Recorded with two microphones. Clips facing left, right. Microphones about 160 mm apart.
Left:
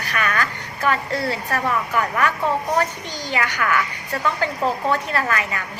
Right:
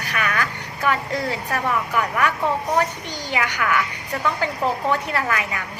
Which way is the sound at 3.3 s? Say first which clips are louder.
Even; 15° right (ahead or behind).